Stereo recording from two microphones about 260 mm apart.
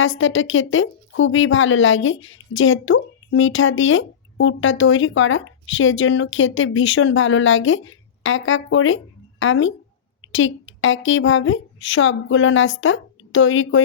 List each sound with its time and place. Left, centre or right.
0.2 s speech: left